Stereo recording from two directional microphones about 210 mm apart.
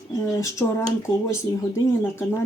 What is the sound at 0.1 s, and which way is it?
Speech, 15° left (ahead or behind).